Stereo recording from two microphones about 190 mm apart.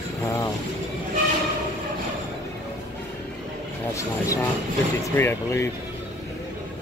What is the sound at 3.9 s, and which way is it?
Speech, 15° left (ahead or behind).